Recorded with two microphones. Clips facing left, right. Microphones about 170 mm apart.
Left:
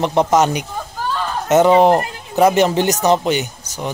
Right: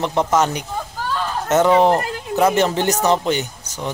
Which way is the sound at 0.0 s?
15° left (ahead or behind).